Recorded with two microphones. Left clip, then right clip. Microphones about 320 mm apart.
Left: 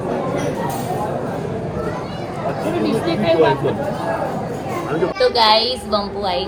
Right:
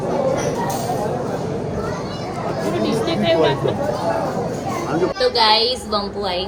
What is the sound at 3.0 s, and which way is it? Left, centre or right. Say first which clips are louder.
Chatter: left 2 dB; centre.